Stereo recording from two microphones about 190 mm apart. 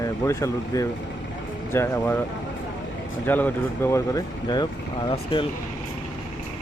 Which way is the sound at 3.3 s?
10° left (ahead or behind).